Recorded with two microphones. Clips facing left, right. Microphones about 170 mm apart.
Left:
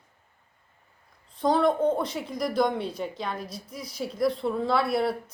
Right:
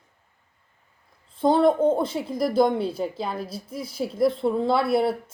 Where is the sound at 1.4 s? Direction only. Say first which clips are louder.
Right 4 dB; 25° right (ahead or behind).